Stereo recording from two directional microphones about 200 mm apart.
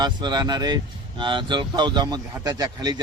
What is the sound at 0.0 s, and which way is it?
Speech, 20° right (ahead or behind).